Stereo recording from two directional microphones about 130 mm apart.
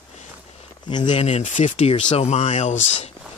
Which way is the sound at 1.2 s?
65° left (ahead or behind).